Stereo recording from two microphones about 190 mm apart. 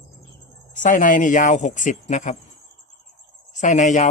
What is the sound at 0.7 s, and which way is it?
Speech, 45° left (ahead or behind).